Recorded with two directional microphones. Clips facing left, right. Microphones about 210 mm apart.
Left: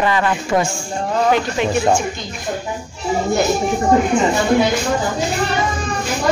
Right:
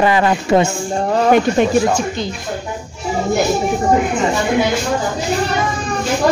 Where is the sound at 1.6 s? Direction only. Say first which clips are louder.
Right 5 dB; 50° right (ahead or behind).